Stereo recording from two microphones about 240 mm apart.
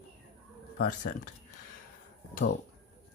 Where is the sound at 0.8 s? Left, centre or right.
Left.